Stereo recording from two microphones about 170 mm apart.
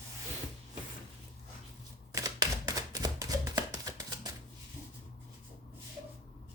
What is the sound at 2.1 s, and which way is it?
Chopping, 20° right (ahead or behind).